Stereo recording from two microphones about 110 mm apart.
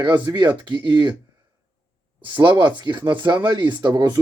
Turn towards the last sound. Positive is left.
turn(degrees=-40)  # may be behind; listen again after turning